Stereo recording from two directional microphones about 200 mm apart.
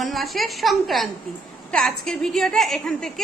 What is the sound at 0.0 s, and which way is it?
A woman's voice, centre (ahead or behind).